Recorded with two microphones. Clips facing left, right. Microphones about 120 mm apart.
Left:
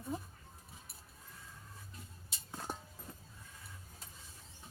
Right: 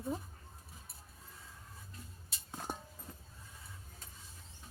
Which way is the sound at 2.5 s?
15° right (ahead or behind).